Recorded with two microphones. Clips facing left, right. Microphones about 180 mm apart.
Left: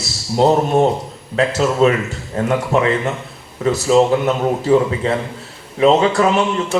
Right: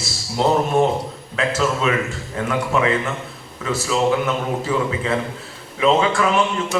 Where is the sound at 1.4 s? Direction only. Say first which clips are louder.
Left 6 dB; 35° left (ahead or behind).